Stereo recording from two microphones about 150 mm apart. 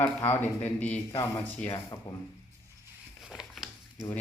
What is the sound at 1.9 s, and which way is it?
Speech, 25° left (ahead or behind).